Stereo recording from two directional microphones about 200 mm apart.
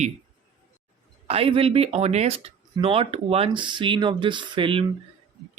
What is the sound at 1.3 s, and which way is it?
Speech, 30° right (ahead or behind).